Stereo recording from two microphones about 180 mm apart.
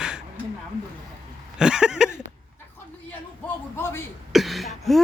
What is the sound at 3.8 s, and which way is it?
Speech, 15° left (ahead or behind).